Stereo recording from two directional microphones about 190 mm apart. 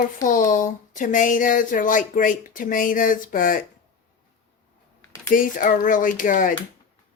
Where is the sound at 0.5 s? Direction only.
40° left (ahead or behind).